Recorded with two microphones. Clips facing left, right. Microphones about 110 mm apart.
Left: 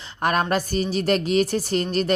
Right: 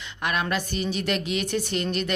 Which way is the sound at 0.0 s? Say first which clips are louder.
Left 6 dB; 40° left (ahead or behind).